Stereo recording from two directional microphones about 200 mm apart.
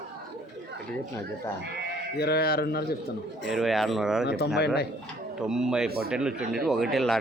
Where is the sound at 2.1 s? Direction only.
55° left (ahead or behind).